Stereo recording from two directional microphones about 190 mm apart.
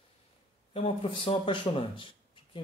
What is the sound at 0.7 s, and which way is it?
Speech, 30° left (ahead or behind).